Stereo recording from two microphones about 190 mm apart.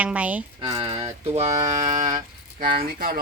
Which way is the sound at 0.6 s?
25° right (ahead or behind).